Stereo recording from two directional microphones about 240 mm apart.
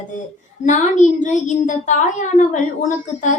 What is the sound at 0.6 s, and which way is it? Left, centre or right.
A woman's voice, left.